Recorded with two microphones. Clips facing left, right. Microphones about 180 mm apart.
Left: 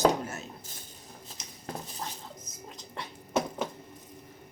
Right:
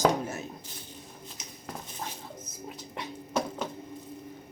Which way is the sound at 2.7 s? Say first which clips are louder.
Even; 15° right (ahead or behind).